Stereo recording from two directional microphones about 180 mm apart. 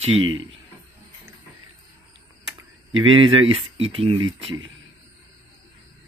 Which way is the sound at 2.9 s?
90° right.